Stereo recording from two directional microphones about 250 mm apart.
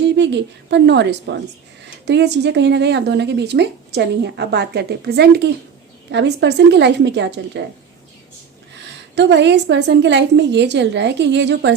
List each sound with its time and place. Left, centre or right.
0.0 s speech: right
9.1 s speech: right